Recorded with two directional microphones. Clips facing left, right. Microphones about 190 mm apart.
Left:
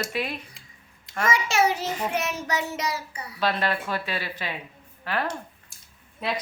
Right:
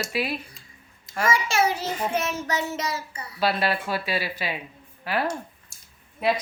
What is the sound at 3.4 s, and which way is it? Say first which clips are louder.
A woman's voice: right 2 dB; 10° right (ahead or behind).